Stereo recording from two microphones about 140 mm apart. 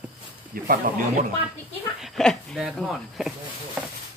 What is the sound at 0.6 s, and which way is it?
Speech, 90° right.